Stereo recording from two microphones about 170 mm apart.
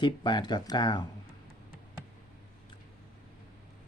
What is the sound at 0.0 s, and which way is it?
Speech, 25° left (ahead or behind).